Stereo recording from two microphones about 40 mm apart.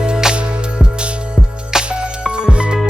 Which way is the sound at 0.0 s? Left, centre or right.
Centre.